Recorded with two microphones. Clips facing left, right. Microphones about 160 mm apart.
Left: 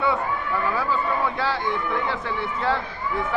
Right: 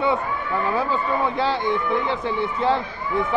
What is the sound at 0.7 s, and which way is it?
Speech, 20° right (ahead or behind).